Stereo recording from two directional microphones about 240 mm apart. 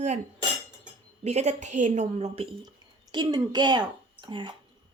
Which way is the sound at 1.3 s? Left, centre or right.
Right.